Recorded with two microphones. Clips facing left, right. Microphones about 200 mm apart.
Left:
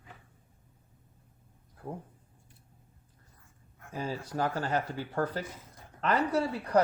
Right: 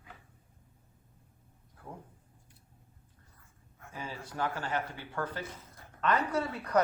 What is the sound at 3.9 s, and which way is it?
Speech, 40° left (ahead or behind).